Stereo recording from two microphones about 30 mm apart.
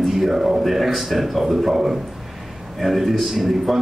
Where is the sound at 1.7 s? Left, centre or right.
Centre.